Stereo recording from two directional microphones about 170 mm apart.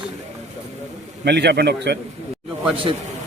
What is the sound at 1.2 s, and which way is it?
Speech, 80° right.